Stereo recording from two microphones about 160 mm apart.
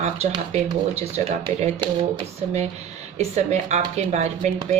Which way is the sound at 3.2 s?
45° right (ahead or behind).